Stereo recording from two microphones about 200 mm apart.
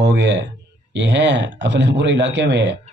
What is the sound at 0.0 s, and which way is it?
Speech, 60° right (ahead or behind).